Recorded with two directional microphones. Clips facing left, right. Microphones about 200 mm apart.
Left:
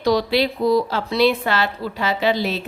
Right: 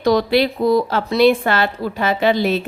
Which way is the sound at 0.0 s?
50° right (ahead or behind).